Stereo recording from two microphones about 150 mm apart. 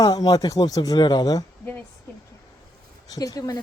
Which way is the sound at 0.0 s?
25° left (ahead or behind).